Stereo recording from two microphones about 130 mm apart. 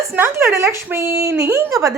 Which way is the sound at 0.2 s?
20° right (ahead or behind).